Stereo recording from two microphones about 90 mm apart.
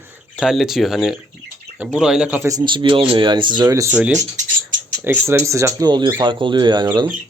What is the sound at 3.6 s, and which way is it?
Speech, 40° right (ahead or behind).